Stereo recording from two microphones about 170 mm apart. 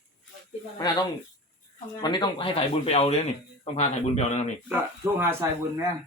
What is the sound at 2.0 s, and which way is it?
Speech, 25° left (ahead or behind).